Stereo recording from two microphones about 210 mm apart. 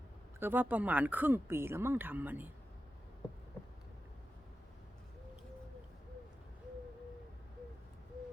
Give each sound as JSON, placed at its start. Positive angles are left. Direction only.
{"t": 0.3, "sound": "speech", "side_deg": -10}